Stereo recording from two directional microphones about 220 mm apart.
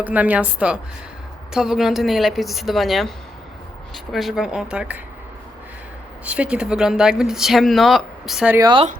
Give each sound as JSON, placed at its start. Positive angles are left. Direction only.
{"t": 0.0, "sound": "a woman's voice", "side_deg": -5}
{"t": 6.2, "sound": "speech", "side_deg": -5}
{"t": 8.5, "sound": "speech", "side_deg": -20}